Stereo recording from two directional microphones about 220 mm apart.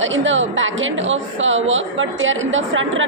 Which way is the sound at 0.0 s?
60° right (ahead or behind).